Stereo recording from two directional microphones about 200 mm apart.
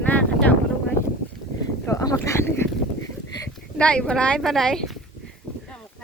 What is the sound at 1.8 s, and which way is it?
Speech, 15° left (ahead or behind).